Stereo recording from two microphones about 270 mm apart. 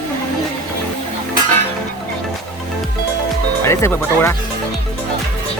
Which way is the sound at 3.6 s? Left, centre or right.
Centre.